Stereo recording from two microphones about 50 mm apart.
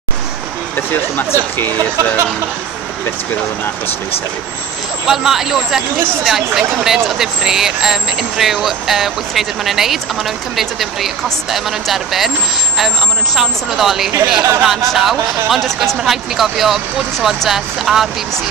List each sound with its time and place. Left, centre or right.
0.7 s speech: left
5.0 s speech: centre